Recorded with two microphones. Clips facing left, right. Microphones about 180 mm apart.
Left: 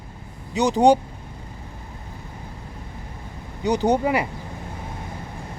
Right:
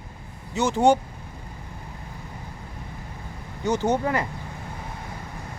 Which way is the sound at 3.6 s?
15° left (ahead or behind).